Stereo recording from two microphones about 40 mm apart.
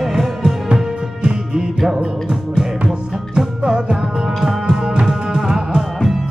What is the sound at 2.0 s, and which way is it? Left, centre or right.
Music, right.